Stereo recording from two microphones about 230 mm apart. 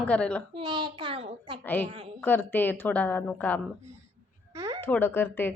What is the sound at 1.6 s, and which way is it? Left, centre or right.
Speech, centre.